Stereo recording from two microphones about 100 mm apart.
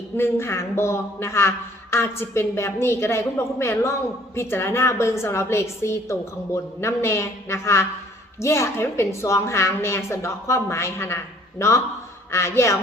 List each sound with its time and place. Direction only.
0.2 s a man's voice: 25° left (ahead or behind)
12.3 s a man's voice: 25° left (ahead or behind)